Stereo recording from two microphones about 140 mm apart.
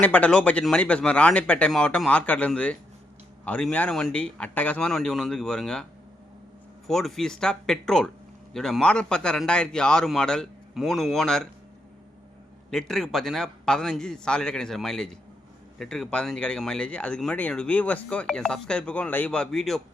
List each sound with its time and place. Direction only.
0.0 s speech: 10° left (ahead or behind)
6.8 s a man's voice: centre (ahead or behind)
12.7 s a man's voice: 5° left (ahead or behind)